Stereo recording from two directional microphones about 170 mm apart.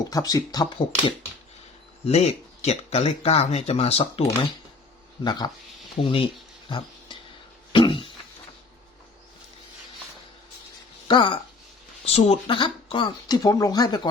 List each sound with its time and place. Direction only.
0.0 s speech: 20° left (ahead or behind)
2.0 s speech: 40° left (ahead or behind)
5.2 s speech: 25° left (ahead or behind)
6.0 s a sound: 30° left (ahead or behind)
11.1 s speech: 30° left (ahead or behind)